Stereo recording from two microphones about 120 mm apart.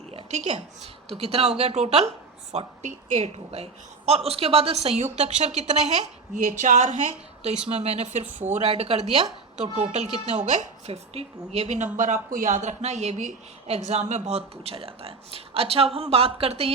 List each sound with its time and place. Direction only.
0.1 s a sound: 55° right (ahead or behind)
0.3 s speech: 70° right (ahead or behind)
2.5 s a woman's voice: 70° right (ahead or behind)
7.7 s a woman's voice: 60° right (ahead or behind); by 8.7 s 80° right
8.7 s speech: 55° right (ahead or behind)
9.8 s a woman's voice: 70° right (ahead or behind)
11.9 s speech: 90° right; by 16.7 s 55° right (ahead or behind)